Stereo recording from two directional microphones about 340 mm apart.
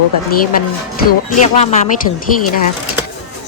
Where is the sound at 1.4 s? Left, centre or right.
Left.